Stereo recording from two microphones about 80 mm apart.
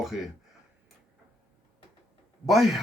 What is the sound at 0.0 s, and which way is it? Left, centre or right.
Speech, centre.